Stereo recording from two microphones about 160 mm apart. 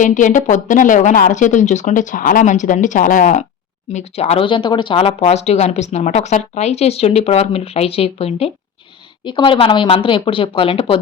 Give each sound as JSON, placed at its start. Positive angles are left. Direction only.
{"t": 0.0, "sound": "speech", "side_deg": 50}
{"t": 3.9, "sound": "speech", "side_deg": 40}